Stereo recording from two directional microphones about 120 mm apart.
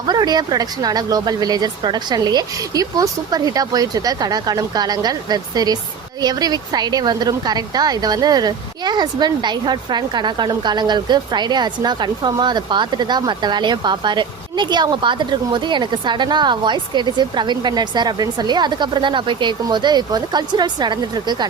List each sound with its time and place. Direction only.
0.1 s a woman's voice: 35° right (ahead or behind)